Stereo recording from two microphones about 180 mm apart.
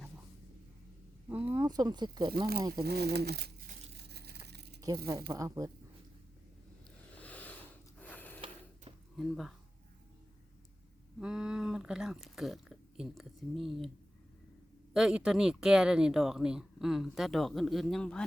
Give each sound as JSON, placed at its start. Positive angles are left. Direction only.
{"t": 1.3, "sound": "a sound", "side_deg": -10}
{"t": 1.6, "sound": "speech", "side_deg": -20}
{"t": 2.8, "sound": "speech", "side_deg": -65}
{"t": 3.9, "sound": "crumpling", "side_deg": -65}
{"t": 5.3, "sound": "speech", "side_deg": -20}
{"t": 7.2, "sound": "a sound", "side_deg": 10}
{"t": 7.9, "sound": "snort", "side_deg": 10}
{"t": 9.1, "sound": "speech", "side_deg": 0}
{"t": 11.2, "sound": "speech", "side_deg": -5}
{"t": 14.9, "sound": "speech", "side_deg": -5}